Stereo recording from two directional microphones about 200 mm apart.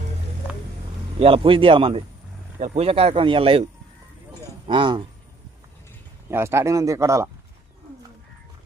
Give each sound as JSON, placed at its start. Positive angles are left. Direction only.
{"t": 1.2, "sound": "speech", "side_deg": -25}
{"t": 6.2, "sound": "speech", "side_deg": -15}